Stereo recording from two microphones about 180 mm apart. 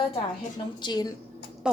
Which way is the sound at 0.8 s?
20° left (ahead or behind).